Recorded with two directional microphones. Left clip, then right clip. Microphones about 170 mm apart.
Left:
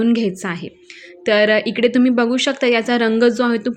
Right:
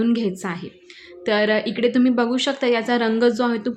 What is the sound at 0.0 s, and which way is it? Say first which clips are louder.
A woman's voice: left 4 dB; 20° left (ahead or behind).